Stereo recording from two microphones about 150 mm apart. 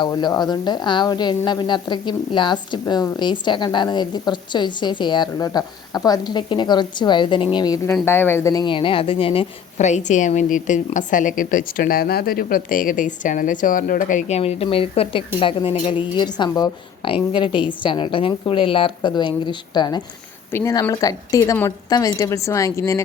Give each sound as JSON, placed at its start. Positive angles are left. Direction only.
{"t": 0.0, "sound": "a woman's voice", "side_deg": 30}
{"t": 8.0, "sound": "speech", "side_deg": 15}
{"t": 8.6, "sound": "a woman's voice", "side_deg": 35}
{"t": 9.7, "sound": "a woman's voice", "side_deg": 50}
{"t": 20.5, "sound": "a woman's voice", "side_deg": 15}